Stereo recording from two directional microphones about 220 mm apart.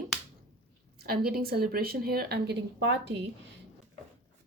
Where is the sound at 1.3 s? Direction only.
45° right (ahead or behind).